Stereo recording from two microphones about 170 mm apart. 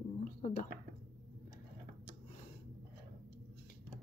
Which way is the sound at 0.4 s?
50° left (ahead or behind).